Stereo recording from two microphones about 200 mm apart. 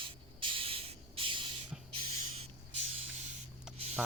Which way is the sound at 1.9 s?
30° right (ahead or behind).